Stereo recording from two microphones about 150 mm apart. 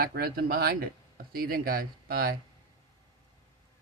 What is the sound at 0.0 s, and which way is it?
Speech, 85° right.